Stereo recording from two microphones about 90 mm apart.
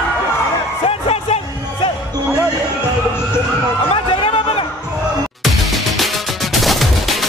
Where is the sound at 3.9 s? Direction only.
90° left.